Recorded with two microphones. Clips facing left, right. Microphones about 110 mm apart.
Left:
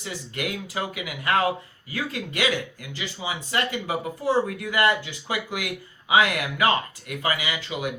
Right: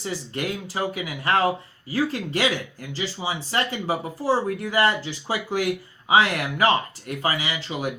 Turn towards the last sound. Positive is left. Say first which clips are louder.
# right 1 dB
turn(degrees=-30)  # may be behind; listen again after turning